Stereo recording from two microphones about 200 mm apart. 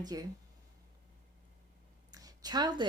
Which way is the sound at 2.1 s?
20° right (ahead or behind).